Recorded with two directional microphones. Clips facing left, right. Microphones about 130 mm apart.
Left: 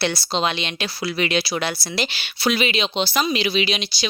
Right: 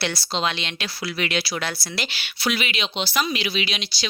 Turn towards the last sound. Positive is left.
turn(degrees=20)  # may be behind; listen again after turning